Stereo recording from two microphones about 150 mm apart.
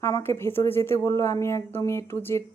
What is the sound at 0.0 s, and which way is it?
Speech, 15° left (ahead or behind).